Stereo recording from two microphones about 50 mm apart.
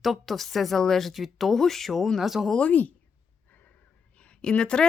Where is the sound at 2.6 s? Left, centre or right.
Left.